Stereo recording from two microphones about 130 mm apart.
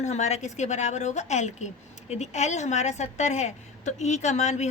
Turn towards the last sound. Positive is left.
turn(degrees=60)  # may be behind; listen again after turning